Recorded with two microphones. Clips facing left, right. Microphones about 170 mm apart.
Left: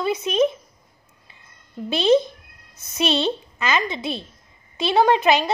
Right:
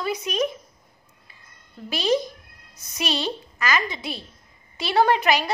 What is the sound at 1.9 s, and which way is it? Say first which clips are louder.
A woman's voice: left 6 dB; 25° left (ahead or behind).